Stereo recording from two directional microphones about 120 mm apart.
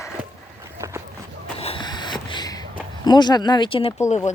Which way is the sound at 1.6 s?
55° left (ahead or behind).